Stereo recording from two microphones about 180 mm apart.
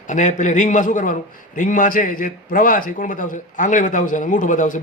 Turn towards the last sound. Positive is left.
turn(degrees=45)  # may be behind; listen again after turning